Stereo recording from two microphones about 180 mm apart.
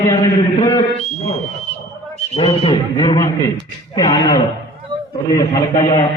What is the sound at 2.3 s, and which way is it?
A man's voice, 30° left (ahead or behind).